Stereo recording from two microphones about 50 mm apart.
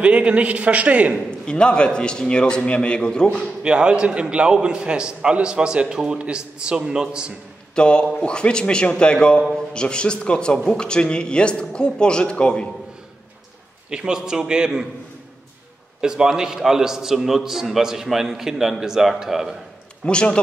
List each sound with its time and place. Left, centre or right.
0.0 s a man's voice: right
1.4 s speech: centre
3.6 s a man's voice: centre
7.7 s speech: centre
13.8 s a man's voice: centre
16.0 s a man's voice: centre
20.1 s speech: centre